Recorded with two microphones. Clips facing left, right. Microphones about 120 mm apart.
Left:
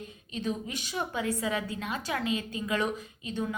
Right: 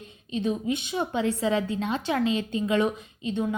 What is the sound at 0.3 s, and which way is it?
A woman's voice, 20° right (ahead or behind).